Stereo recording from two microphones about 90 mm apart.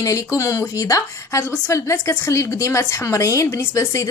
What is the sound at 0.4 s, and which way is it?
A woman's voice, 40° left (ahead or behind).